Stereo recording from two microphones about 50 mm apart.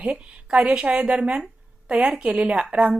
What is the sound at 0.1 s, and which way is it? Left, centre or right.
A woman's voice, centre.